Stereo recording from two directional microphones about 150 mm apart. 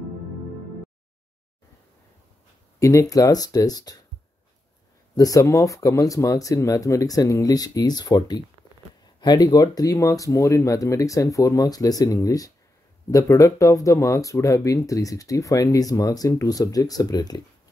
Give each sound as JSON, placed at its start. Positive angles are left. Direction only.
{"t": 2.8, "sound": "speech", "side_deg": 20}
{"t": 5.1, "sound": "speech", "side_deg": 25}